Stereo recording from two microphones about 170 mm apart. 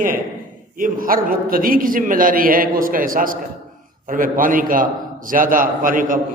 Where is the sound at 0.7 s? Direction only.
55° right (ahead or behind).